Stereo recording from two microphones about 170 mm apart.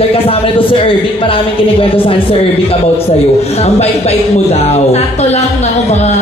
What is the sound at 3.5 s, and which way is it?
A man's voice, 40° left (ahead or behind).